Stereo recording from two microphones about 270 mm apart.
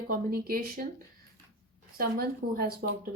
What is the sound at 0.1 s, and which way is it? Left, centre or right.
Speech, right.